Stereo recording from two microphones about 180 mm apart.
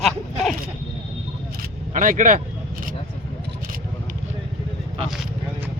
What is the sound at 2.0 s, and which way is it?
Speech, 45° right (ahead or behind).